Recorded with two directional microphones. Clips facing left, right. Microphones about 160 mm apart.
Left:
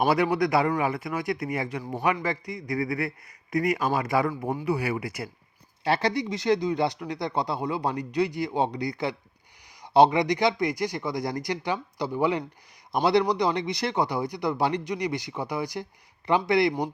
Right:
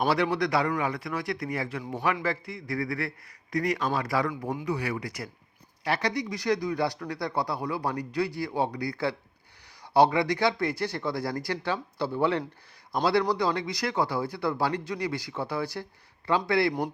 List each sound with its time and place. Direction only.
0.0 s a man's voice: centre (ahead or behind)
0.6 s speech: 20° left (ahead or behind)
1.1 s a man's voice: centre (ahead or behind)
2.6 s speech: 20° left (ahead or behind)
3.5 s a man's voice: 5° left (ahead or behind)
3.9 s speech: 20° left (ahead or behind)